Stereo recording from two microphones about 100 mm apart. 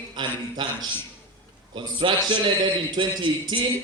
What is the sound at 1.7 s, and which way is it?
A man's voice, 55° right (ahead or behind).